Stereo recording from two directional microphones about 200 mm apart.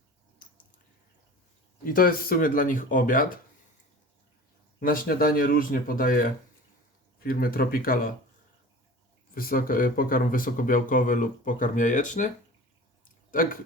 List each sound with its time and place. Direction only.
1.8 s speech: 45° left (ahead or behind)
4.8 s speech: 45° left (ahead or behind)
9.3 s speech: 45° left (ahead or behind)
13.3 s speech: 45° left (ahead or behind)